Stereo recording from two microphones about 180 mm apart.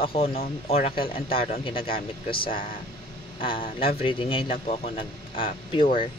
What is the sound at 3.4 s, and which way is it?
A man's voice, 30° left (ahead or behind).